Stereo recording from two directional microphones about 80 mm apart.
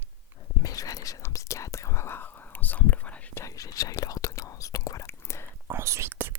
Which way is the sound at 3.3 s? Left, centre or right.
Left.